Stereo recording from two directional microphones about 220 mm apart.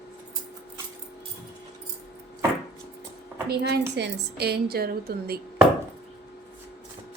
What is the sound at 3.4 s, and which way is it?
A woman's voice, 50° right (ahead or behind).